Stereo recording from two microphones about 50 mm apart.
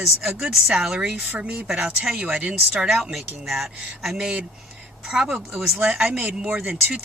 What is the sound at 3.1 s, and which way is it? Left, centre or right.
Speech, centre.